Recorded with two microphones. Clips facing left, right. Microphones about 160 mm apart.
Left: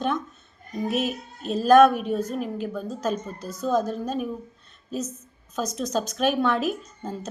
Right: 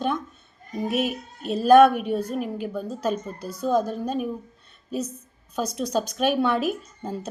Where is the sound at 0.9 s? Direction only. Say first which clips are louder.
Right 1 dB; 55° right (ahead or behind).